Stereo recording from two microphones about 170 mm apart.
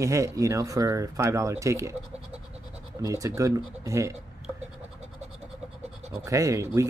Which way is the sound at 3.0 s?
20° right (ahead or behind).